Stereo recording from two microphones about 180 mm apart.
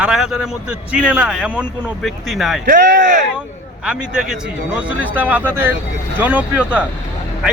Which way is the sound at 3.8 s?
5° right (ahead or behind).